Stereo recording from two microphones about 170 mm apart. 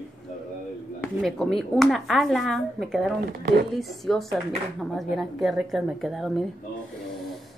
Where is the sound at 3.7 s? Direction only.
Centre (ahead or behind).